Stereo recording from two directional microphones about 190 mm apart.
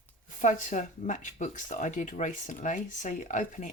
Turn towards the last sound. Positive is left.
turn(degrees=40)  # may be behind; listen again after turning